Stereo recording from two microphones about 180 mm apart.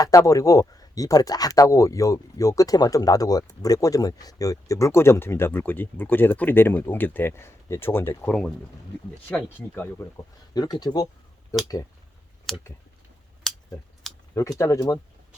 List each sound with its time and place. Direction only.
0.0 s speech: 20° left (ahead or behind)
10.5 s speech: 20° left (ahead or behind)
12.5 s speech: centre (ahead or behind)
13.5 s a sound: 5° left (ahead or behind)
14.3 s speech: 20° left (ahead or behind)